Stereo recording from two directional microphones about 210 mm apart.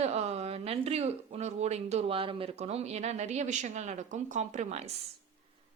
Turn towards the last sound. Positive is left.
turn(degrees=-35)  # may be behind; listen again after turning